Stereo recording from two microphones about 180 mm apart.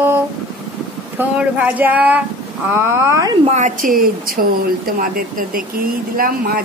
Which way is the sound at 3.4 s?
40° right (ahead or behind).